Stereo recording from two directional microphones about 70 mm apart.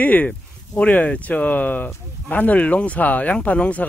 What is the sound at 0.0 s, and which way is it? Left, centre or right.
Speech, left.